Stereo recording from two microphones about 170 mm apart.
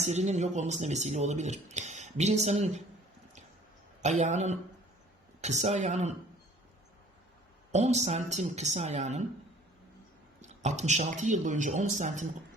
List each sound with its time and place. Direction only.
0.0 s speech: 40° right (ahead or behind)
4.0 s speech: 40° right (ahead or behind)
7.7 s speech: 40° right (ahead or behind)
10.4 s speech: 45° right (ahead or behind)